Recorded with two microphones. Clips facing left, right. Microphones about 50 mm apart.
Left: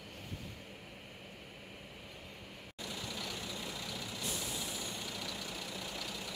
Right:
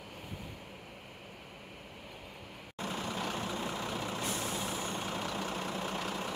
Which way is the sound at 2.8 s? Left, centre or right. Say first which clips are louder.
Right 7 dB; right.